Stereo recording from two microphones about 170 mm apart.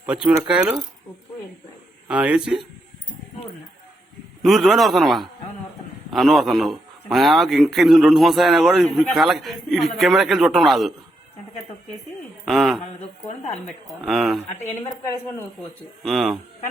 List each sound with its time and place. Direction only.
0.0 s speech: 10° right (ahead or behind)
2.0 s a man's voice: 5° right (ahead or behind)
4.4 s a man's voice: centre (ahead or behind)
12.5 s a man's voice: centre (ahead or behind)
13.2 s a sound: 40° left (ahead or behind)
13.7 s a man's voice: centre (ahead or behind)
16.0 s a man's voice: centre (ahead or behind)